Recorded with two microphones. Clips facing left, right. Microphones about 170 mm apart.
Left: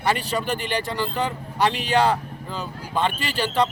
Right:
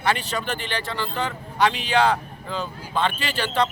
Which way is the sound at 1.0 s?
10° left (ahead or behind).